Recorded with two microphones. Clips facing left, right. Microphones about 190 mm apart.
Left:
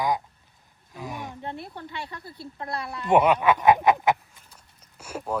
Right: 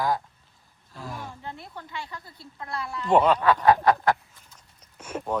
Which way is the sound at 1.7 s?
30° left (ahead or behind).